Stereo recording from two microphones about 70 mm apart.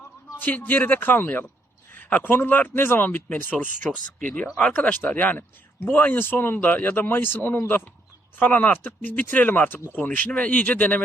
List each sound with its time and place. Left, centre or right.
0.3 s speech: left